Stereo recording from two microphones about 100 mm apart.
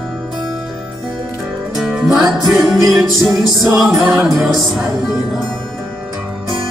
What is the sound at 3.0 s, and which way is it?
Music, 40° right (ahead or behind).